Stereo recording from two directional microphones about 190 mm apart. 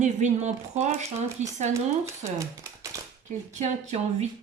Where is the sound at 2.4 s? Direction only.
15° right (ahead or behind).